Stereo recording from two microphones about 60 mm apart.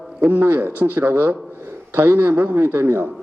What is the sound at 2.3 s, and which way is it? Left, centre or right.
Speech, right.